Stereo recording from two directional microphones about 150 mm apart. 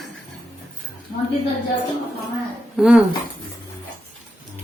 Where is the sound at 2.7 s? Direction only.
5° right (ahead or behind).